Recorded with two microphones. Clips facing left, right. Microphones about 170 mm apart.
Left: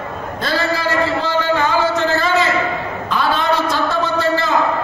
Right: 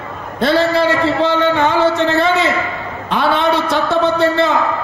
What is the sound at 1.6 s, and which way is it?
Music, 70° right (ahead or behind).